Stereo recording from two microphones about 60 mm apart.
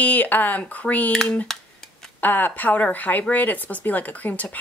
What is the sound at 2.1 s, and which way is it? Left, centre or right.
A woman's voice, left.